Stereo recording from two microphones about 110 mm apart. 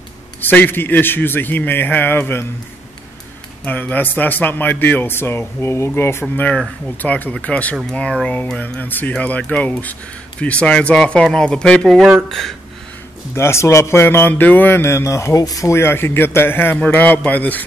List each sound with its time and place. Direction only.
0.4 s a man's voice: 15° left (ahead or behind)
3.6 s a man's voice: 15° left (ahead or behind)
13.3 s a man's voice: 25° left (ahead or behind)